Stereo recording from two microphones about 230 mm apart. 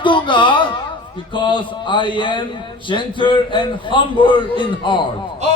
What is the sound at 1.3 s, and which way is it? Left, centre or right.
A man's voice, left.